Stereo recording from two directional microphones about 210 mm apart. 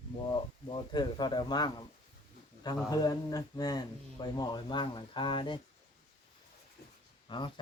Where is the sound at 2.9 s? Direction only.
20° left (ahead or behind).